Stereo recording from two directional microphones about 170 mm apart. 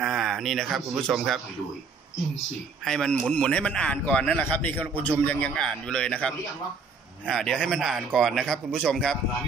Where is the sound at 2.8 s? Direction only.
5° left (ahead or behind).